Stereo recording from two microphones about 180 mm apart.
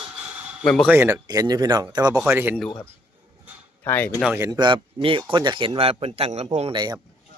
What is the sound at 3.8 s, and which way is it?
Speech, 10° left (ahead or behind).